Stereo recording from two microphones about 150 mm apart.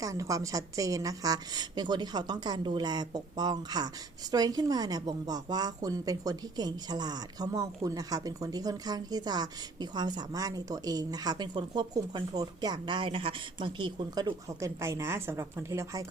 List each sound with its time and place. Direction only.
0.0 s speech: 20° right (ahead or behind)